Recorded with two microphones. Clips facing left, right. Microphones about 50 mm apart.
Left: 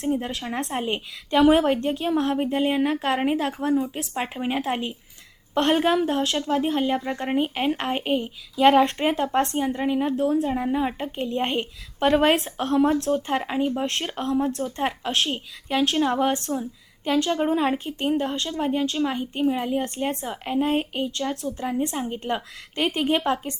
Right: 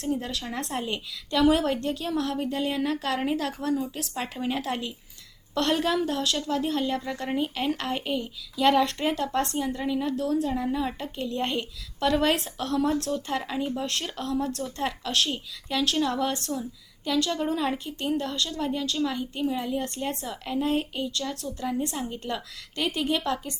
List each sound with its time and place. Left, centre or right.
0.0 s a woman's voice: left